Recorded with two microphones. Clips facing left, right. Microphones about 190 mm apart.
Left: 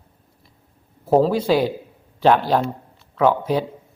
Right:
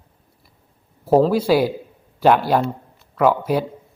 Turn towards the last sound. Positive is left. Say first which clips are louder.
# right 1 dB
turn(degrees=-5)  # may be behind; listen again after turning